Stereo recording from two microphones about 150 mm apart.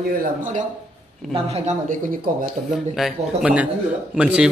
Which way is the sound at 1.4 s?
55° right (ahead or behind).